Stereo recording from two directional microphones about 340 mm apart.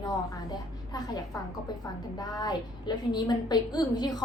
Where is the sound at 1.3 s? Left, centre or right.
Centre.